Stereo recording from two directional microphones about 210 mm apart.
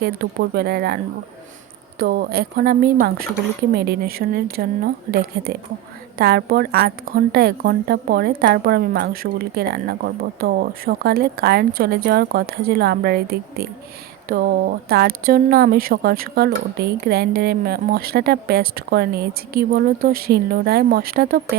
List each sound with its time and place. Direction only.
0.0 s a woman's voice: 50° right (ahead or behind)
2.0 s a woman's voice: 45° right (ahead or behind)